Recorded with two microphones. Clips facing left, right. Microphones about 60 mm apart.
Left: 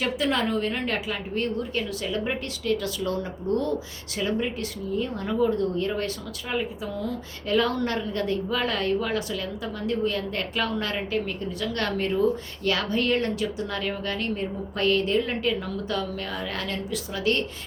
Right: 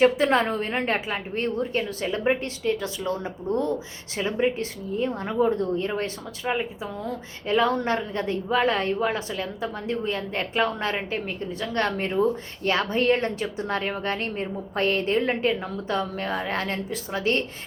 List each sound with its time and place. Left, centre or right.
0.0 s a woman's voice: right